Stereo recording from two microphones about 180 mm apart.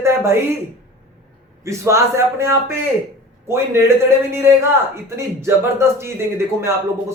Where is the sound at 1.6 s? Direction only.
15° right (ahead or behind).